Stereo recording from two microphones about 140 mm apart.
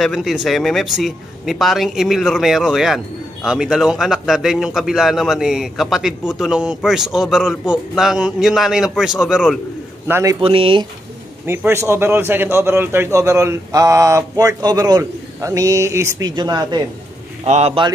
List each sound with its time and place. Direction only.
0.0 s a man's voice: centre (ahead or behind)
10.0 s a man's voice: 15° right (ahead or behind)
10.4 s speech: 40° right (ahead or behind)
11.4 s a man's voice: 15° right (ahead or behind)
17.5 s a man's voice: 50° right (ahead or behind)